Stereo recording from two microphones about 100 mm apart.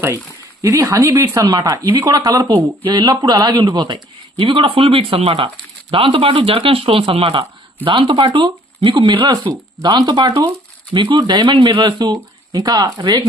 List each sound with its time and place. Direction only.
0.6 s speech: 35° right (ahead or behind)
4.4 s speech: 70° right (ahead or behind)
7.9 s speech: 55° right (ahead or behind)
10.9 s speech: 55° right (ahead or behind)